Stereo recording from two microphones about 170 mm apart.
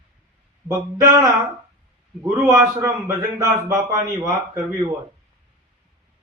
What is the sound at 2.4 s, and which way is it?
A man's voice, 15° right (ahead or behind).